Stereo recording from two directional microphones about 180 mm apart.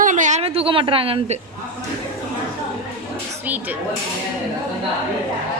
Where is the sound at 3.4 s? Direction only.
10° right (ahead or behind).